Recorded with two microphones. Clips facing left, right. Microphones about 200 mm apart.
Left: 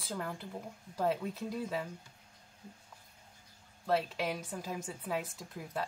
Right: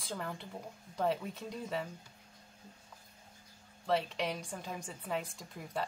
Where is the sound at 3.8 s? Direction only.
5° left (ahead or behind).